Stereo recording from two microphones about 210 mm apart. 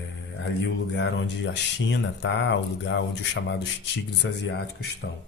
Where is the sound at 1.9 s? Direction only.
55° left (ahead or behind).